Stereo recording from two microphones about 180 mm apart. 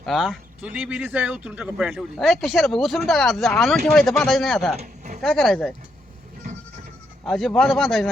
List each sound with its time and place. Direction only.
0.0 s speech: centre (ahead or behind)
4.8 s a sound: 40° right (ahead or behind)
5.2 s speech: 5° left (ahead or behind)
7.3 s speech: 5° left (ahead or behind)